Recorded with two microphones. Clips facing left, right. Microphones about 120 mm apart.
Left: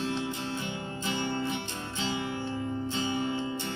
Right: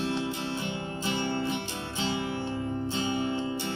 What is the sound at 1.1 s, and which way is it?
Music, 25° right (ahead or behind).